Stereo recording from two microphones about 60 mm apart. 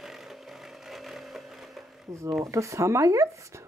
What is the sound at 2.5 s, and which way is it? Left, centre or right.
Speech, right.